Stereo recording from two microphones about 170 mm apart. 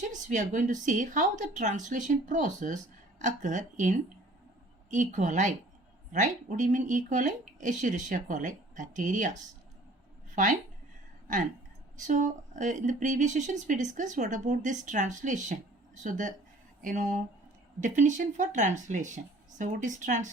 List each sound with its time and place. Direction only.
0.1 s speech: 50° right (ahead or behind)
11.9 s speech: 50° right (ahead or behind)